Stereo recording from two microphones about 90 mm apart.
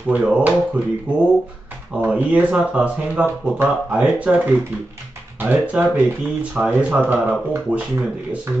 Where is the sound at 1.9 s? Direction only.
15° right (ahead or behind).